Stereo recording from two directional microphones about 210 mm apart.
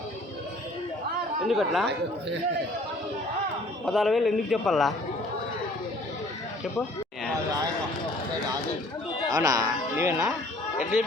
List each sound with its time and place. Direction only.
1.5 s a man's voice: centre (ahead or behind)
3.8 s a man's voice: centre (ahead or behind)
9.3 s speech: 15° right (ahead or behind)